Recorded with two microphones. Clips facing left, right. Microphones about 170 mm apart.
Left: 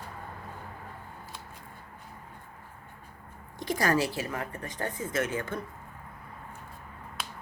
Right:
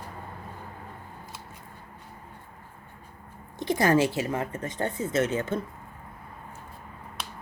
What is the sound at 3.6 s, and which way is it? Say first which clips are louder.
Speech: right 5 dB; 25° right (ahead or behind).